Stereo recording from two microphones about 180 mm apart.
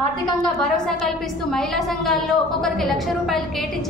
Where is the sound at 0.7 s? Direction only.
5° left (ahead or behind).